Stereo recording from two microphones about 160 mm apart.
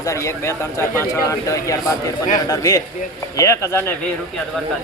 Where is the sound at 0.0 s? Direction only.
20° left (ahead or behind).